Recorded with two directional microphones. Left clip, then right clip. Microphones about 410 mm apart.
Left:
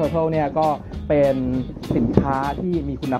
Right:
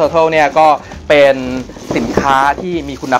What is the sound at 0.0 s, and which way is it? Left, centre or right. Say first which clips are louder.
Speech: right 10 dB; centre.